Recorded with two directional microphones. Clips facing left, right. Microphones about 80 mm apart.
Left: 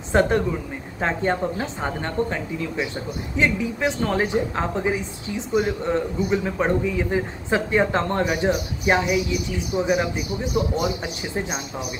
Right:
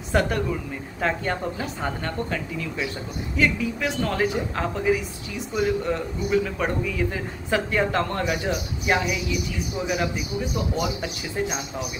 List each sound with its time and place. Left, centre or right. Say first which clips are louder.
0.1 s speech: left 4 dB; left
10.8 s speech: left 2 dB; left